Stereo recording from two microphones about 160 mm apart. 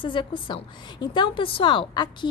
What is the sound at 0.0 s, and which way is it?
A woman's voice, 30° left (ahead or behind).